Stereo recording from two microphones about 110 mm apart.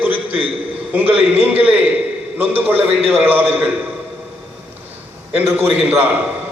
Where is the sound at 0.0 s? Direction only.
15° right (ahead or behind).